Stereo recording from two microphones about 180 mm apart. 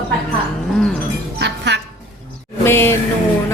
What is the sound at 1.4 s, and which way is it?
Music, 75° right (ahead or behind).